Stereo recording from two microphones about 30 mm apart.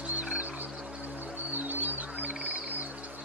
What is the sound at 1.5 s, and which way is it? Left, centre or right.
Music, right.